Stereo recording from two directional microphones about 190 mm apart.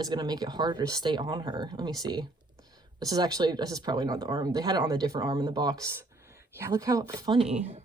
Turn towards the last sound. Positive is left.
turn(degrees=-35)  # may be behind; listen again after turning